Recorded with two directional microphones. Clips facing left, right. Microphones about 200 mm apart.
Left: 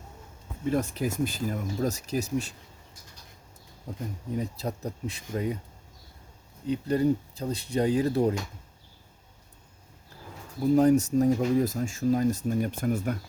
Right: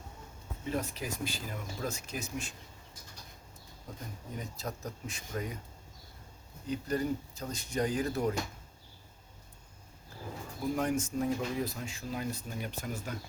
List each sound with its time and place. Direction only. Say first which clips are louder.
0.7 s speech: left 8 dB; 50° left (ahead or behind)
4.4 s speech: left 8 dB; 30° left (ahead or behind)
6.7 s speech: left 8 dB; 30° left (ahead or behind)
10.8 s speech: left 12 dB; 40° left (ahead or behind); by 13.1 s 55° left (ahead or behind)